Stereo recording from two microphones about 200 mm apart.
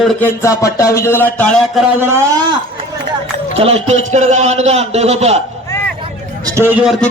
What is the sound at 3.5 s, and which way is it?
A man's voice, 30° right (ahead or behind).